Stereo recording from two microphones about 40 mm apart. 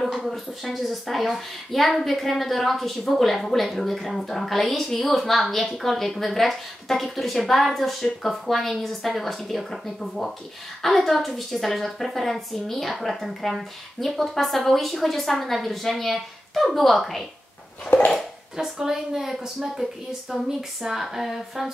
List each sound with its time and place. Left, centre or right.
0.0 s a woman's voice: centre
17.8 s a sound: left
18.6 s speech: centre